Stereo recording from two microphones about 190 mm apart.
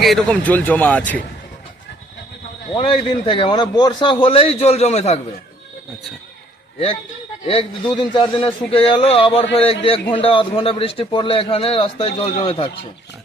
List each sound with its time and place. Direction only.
0.0 s speech: centre (ahead or behind)
2.7 s a man's voice: 25° left (ahead or behind)
7.4 s a man's voice: 30° left (ahead or behind)